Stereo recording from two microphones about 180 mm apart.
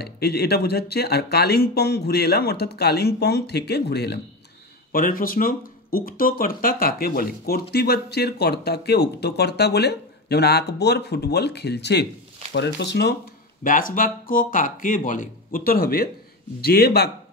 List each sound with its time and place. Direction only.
0.0 s speech: 65° left (ahead or behind)
4.9 s speech: 55° left (ahead or behind); by 13.1 s 70° left (ahead or behind)
13.7 s speech: 50° left (ahead or behind)